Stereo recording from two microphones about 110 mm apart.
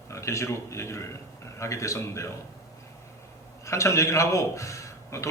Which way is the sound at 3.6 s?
25° left (ahead or behind).